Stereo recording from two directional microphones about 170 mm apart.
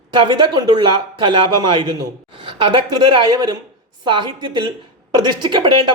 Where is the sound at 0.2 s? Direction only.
25° right (ahead or behind).